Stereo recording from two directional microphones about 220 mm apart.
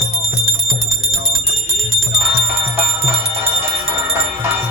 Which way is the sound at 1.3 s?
30° right (ahead or behind).